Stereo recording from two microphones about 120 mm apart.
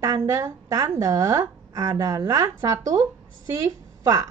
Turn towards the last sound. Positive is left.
turn(degrees=-30)  # may be behind; listen again after turning